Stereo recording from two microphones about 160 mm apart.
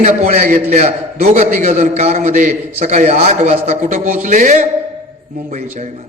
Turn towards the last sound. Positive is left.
turn(degrees=-55)  # may be behind; listen again after turning